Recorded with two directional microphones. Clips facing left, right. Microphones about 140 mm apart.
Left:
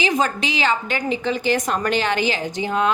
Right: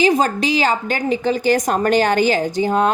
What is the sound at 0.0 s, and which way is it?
A woman's voice, 35° right (ahead or behind).